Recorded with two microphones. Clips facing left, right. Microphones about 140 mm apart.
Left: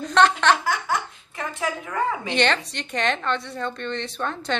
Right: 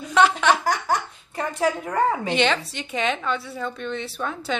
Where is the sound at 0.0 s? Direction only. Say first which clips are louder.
Even; 10° right (ahead or behind).